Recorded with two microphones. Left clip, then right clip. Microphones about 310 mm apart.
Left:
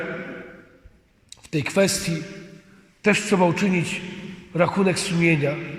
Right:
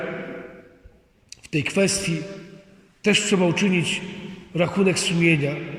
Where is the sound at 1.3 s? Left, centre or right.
Centre.